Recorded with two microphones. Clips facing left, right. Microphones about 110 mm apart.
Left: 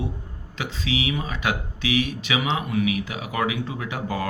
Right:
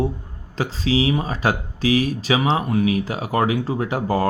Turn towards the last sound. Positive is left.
turn(degrees=-35)  # may be behind; listen again after turning